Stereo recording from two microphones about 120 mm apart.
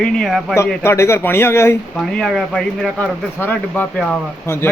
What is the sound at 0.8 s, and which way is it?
Speech, 20° left (ahead or behind).